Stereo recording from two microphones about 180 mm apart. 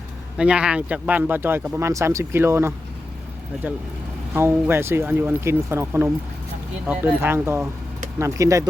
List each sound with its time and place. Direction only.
0.3 s speech: 5° right (ahead or behind)
4.4 s speech: 15° right (ahead or behind)